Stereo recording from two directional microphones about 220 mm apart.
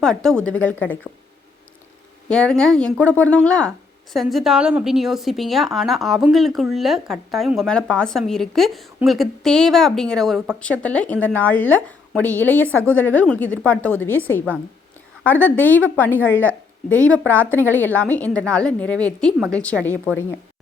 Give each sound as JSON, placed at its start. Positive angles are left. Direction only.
{"t": 0.0, "sound": "a woman's voice", "side_deg": 5}
{"t": 2.3, "sound": "a woman's voice", "side_deg": 5}
{"t": 17.5, "sound": "a woman's voice", "side_deg": 10}